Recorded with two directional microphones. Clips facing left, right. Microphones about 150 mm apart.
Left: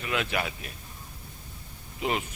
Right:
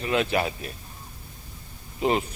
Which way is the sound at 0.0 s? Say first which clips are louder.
Right 6 dB; 35° right (ahead or behind).